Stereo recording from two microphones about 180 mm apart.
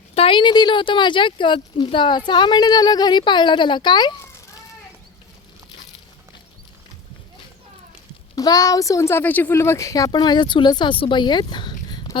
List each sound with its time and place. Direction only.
0.1 s speech: 30° left (ahead or behind)
8.4 s speech: 20° left (ahead or behind)